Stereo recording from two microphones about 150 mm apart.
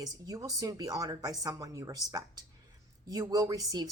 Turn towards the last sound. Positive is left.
turn(degrees=-25)  # may be behind; listen again after turning